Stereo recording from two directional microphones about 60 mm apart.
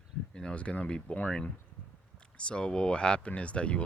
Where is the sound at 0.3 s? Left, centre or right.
Centre.